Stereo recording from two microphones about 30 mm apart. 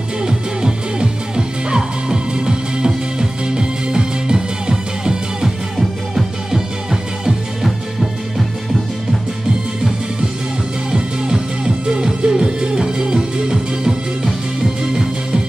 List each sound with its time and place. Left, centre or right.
0.2 s music: right
6.5 s music: centre
10.9 s music: right